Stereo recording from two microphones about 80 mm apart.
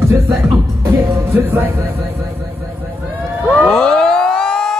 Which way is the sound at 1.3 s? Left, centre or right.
Right.